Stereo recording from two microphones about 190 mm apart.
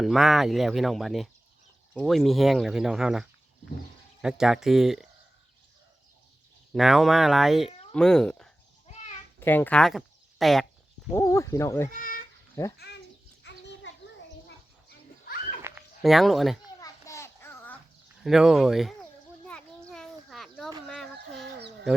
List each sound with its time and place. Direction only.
0.0 s speech: centre (ahead or behind)
6.7 s speech: centre (ahead or behind)
11.1 s speech: 15° left (ahead or behind)
11.9 s speech: 45° left (ahead or behind)
12.6 s speech: 15° left (ahead or behind)
13.4 s children playing: 65° left (ahead or behind)
15.7 s dog: 10° right (ahead or behind)
16.0 s speech: centre (ahead or behind)
16.8 s a sound: 15° left (ahead or behind)
18.2 s speech: centre (ahead or behind)
19.5 s children playing: 5° left (ahead or behind)
20.8 s fowl: centre (ahead or behind)